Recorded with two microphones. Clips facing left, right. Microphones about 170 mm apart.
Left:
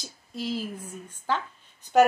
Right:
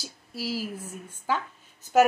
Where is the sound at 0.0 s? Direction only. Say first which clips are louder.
Left 1 dB; 5° right (ahead or behind).